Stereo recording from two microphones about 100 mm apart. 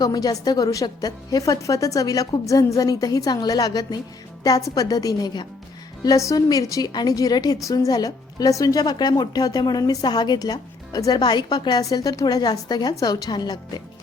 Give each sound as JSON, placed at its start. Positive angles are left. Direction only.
{"t": 0.0, "sound": "a woman's voice", "side_deg": 40}